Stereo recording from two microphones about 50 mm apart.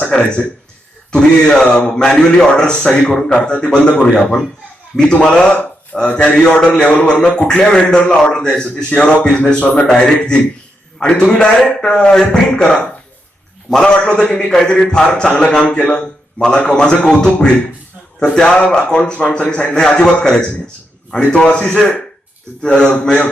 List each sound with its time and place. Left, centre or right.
0.2 s a man's voice: left